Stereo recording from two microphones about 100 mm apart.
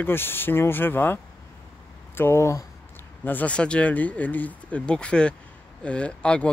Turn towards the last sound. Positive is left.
turn(degrees=10)  # may be behind; listen again after turning